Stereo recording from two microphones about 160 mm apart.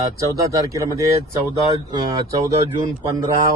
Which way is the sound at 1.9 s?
25° right (ahead or behind).